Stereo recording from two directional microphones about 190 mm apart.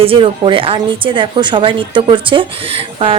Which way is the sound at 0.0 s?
30° right (ahead or behind).